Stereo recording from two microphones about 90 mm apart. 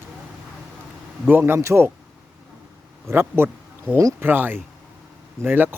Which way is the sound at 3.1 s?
25° right (ahead or behind).